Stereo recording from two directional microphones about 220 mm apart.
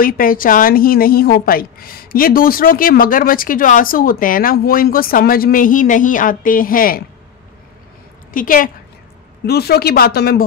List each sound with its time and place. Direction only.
0.0 s a woman's voice: 40° left (ahead or behind)
8.3 s a woman's voice: 40° left (ahead or behind)